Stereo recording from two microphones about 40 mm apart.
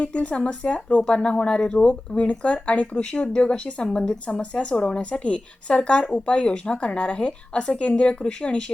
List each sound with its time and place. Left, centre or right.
0.0 s speech: left
3.8 s speech: centre